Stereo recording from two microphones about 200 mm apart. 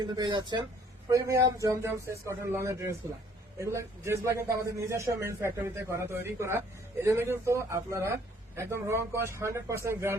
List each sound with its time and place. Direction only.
0.0 s a man's voice: 20° right (ahead or behind)